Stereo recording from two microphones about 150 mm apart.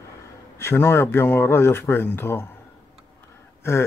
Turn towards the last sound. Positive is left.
turn(degrees=15)  # may be behind; listen again after turning